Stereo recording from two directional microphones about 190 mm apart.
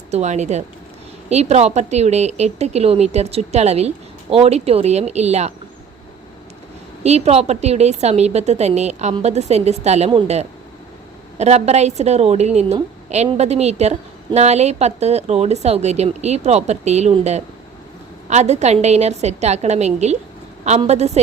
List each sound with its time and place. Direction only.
0.1 s a woman's voice: 35° right (ahead or behind)
7.0 s a woman's voice: 35° right (ahead or behind)